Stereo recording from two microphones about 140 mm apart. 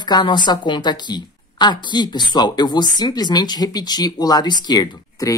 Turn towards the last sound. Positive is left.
turn(degrees=25)  # may be behind; listen again after turning